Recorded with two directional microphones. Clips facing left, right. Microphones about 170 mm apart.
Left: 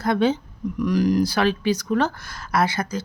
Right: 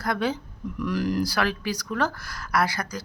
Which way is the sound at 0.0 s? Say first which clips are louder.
Left 6 dB; 25° left (ahead or behind).